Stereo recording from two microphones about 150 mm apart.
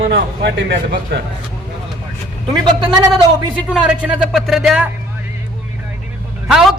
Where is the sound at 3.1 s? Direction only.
Centre (ahead or behind).